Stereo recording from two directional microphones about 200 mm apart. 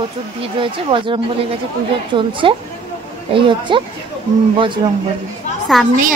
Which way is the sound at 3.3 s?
25° right (ahead or behind).